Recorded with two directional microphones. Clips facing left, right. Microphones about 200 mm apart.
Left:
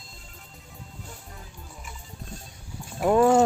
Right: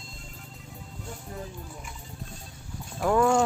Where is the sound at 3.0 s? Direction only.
25° left (ahead or behind).